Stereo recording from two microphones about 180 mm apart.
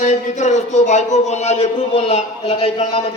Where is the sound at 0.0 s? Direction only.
40° left (ahead or behind).